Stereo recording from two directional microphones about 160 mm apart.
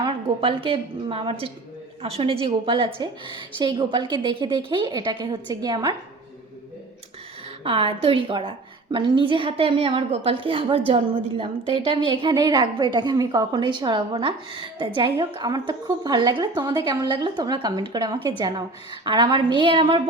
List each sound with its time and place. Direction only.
0.0 s a woman's voice: 35° right (ahead or behind)
7.6 s a woman's voice: 35° right (ahead or behind)